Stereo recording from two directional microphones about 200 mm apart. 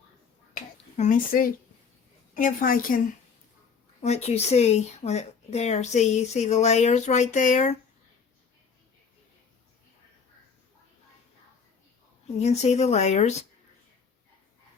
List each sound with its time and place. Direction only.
0.5 s a sound: 40° left (ahead or behind)
2.3 s a woman's voice: 45° left (ahead or behind)
4.0 s speech: 30° left (ahead or behind)
12.4 s speech: 35° left (ahead or behind)